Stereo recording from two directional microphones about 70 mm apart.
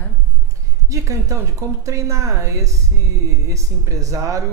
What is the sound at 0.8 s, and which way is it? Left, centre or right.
Speech, right.